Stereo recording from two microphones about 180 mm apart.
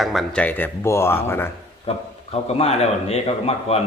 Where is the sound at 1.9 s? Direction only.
35° left (ahead or behind).